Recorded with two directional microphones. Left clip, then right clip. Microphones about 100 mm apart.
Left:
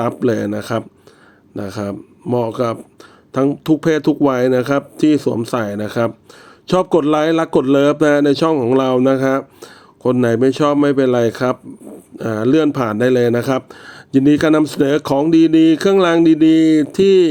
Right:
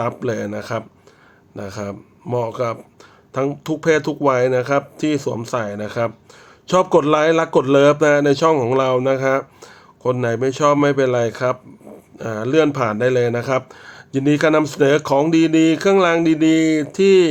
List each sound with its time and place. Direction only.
0.0 s speech: 50° left (ahead or behind)